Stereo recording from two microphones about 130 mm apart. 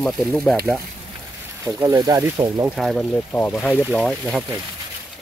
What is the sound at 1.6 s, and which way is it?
Speech, 25° right (ahead or behind).